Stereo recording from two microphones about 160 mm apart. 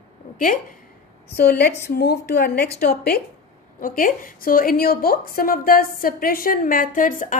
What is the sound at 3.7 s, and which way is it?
A woman's voice, 60° left (ahead or behind).